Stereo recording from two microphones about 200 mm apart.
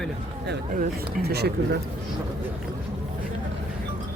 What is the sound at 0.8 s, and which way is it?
Speech, 55° right (ahead or behind).